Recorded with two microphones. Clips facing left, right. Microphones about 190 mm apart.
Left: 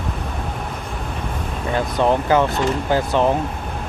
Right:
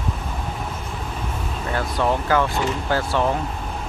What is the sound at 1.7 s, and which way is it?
Speech, 20° left (ahead or behind).